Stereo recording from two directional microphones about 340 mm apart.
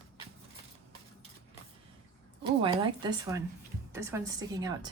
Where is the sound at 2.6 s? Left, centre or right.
Centre.